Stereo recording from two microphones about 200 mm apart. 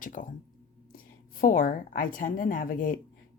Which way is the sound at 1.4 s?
45° left (ahead or behind).